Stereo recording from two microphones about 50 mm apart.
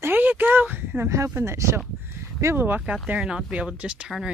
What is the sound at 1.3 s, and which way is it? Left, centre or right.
Speech, right.